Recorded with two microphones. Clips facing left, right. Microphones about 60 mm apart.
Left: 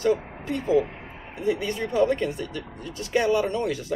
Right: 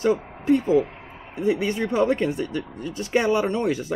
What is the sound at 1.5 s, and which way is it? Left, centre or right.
Speech, right.